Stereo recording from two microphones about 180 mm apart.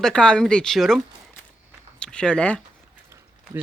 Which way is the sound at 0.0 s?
5° left (ahead or behind).